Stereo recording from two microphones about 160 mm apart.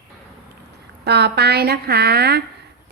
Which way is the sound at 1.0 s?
90° right.